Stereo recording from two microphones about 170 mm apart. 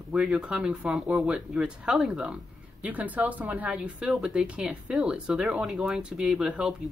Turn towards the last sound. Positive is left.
turn(degrees=-5)  # may be behind; listen again after turning